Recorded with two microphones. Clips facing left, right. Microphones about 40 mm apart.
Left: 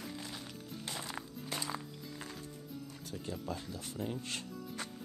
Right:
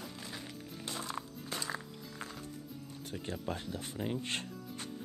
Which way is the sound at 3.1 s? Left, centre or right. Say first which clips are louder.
Right 2 dB; right.